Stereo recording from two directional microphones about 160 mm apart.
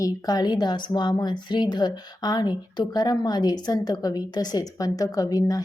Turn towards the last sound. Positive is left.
turn(degrees=25)  # may be behind; listen again after turning